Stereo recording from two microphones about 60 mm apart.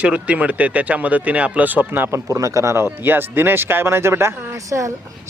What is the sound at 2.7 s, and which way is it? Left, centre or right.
Speech, right.